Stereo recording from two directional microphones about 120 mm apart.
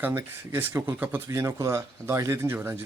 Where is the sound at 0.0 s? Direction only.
20° right (ahead or behind).